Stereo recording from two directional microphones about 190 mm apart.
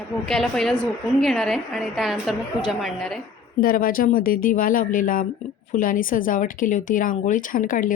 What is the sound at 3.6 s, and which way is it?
Speech, 50° left (ahead or behind).